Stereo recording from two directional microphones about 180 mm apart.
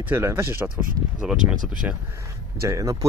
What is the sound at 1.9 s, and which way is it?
Speech, 10° right (ahead or behind).